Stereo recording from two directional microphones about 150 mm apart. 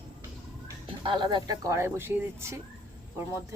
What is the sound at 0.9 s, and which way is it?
Speech, 35° right (ahead or behind).